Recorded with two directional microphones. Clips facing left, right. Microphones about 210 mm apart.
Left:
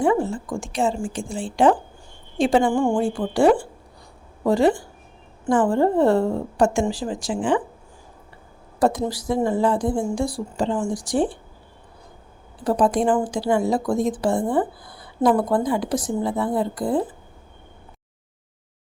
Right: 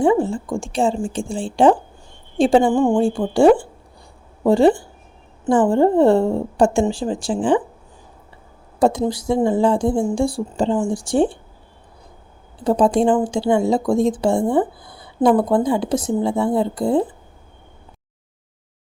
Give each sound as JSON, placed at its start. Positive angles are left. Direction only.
{"t": 0.0, "sound": "a woman's voice", "side_deg": -25}
{"t": 2.7, "sound": "a woman's voice", "side_deg": -20}
{"t": 9.0, "sound": "a woman's voice", "side_deg": -25}
{"t": 12.6, "sound": "a woman's voice", "side_deg": -25}